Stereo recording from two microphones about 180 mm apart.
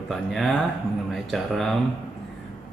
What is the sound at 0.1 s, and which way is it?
Speech, centre (ahead or behind).